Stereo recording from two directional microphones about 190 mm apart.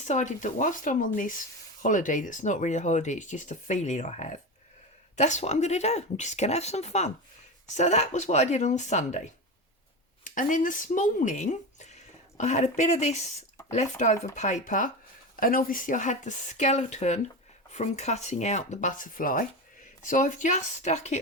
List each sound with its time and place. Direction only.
0.0 s speech: 40° left (ahead or behind)